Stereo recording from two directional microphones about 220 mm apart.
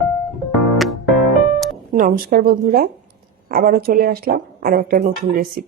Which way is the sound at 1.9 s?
35° right (ahead or behind).